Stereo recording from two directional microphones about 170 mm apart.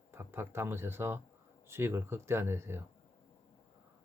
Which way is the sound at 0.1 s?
15° right (ahead or behind).